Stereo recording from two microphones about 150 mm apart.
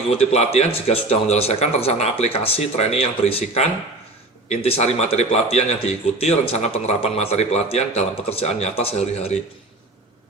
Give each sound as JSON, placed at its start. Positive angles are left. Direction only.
{"t": 0.1, "sound": "speech", "side_deg": 45}